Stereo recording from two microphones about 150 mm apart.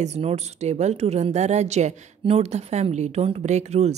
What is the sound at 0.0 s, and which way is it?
A woman's voice, 45° right (ahead or behind).